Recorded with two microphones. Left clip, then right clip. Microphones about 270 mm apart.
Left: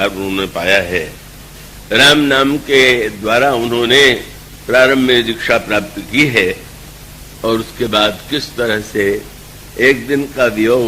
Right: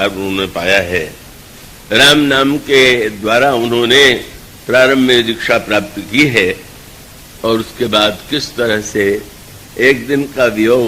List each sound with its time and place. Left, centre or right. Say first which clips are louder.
0.0 s a man's voice: right 1 dB; left